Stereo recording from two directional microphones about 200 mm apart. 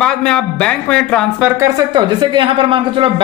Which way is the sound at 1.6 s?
20° right (ahead or behind).